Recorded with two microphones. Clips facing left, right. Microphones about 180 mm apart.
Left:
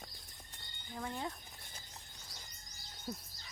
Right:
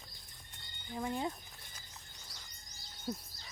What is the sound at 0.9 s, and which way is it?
Speech, 15° right (ahead or behind).